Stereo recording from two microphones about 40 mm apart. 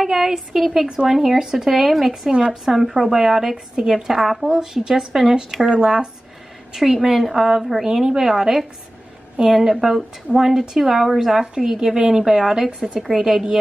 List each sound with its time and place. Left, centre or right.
0.0 s a woman's voice: centre
6.7 s a woman's voice: centre